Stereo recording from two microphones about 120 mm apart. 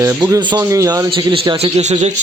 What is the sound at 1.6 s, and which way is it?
Speech, 70° right (ahead or behind).